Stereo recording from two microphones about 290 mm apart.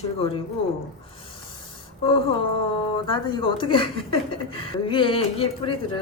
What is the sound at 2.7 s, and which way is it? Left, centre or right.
Speech, centre.